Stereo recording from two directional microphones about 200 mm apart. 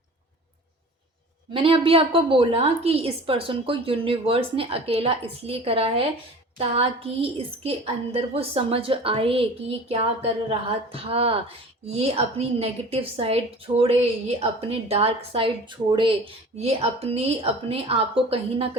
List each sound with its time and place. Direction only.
1.5 s a woman's voice: 25° right (ahead or behind)
10.9 s a woman's voice: 30° right (ahead or behind)